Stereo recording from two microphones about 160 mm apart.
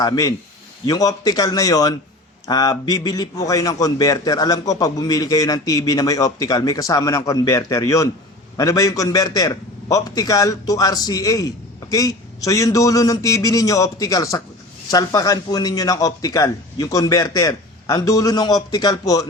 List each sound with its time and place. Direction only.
0.0 s a man's voice: 20° left (ahead or behind)